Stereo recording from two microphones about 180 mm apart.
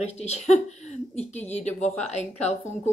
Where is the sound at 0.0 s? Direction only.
40° left (ahead or behind).